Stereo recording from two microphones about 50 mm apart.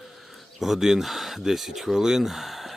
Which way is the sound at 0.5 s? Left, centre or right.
Centre.